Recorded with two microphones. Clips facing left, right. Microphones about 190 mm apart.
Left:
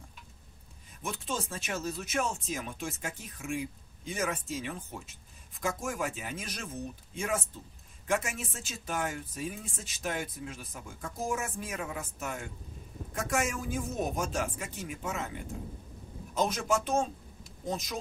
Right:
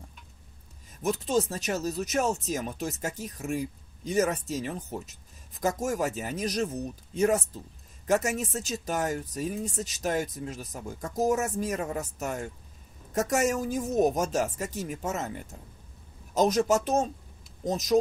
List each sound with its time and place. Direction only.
1.0 s speech: 40° right (ahead or behind)
16.3 s speech: 40° right (ahead or behind)